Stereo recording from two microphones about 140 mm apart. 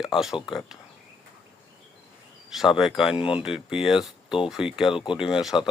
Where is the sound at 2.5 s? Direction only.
Centre (ahead or behind).